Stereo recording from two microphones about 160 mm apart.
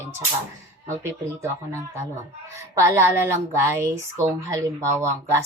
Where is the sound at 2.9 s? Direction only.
15° right (ahead or behind).